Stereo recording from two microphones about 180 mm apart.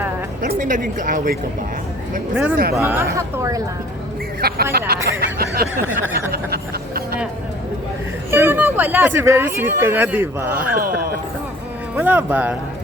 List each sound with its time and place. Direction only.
0.4 s speech: 50° right (ahead or behind)
2.3 s speech: 10° right (ahead or behind)
4.4 s speech: 60° right (ahead or behind)
5.0 s a sound: 60° right (ahead or behind)
6.3 s a sound: 60° right (ahead or behind)
8.3 s speech: 10° right (ahead or behind)
10.8 s speech: 55° right (ahead or behind)
11.9 s speech: 10° right (ahead or behind)